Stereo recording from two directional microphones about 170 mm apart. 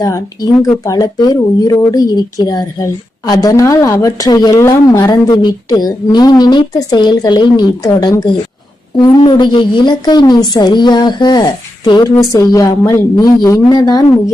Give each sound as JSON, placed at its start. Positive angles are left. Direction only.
{"t": 0.6, "sound": "speech", "side_deg": 20}